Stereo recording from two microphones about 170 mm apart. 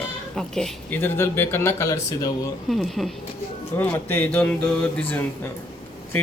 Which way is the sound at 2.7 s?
Centre (ahead or behind).